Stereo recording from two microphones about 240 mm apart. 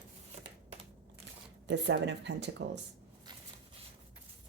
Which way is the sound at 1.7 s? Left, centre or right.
Right.